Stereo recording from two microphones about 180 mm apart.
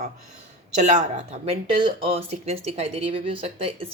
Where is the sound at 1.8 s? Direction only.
30° right (ahead or behind).